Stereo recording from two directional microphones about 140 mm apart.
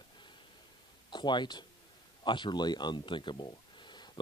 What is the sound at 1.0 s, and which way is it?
Speech, 30° left (ahead or behind).